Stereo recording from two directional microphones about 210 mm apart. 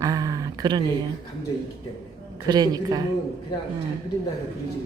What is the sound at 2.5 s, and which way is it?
Speech, 20° right (ahead or behind).